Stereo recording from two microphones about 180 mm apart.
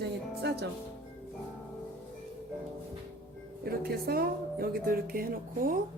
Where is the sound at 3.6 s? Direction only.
60° right (ahead or behind).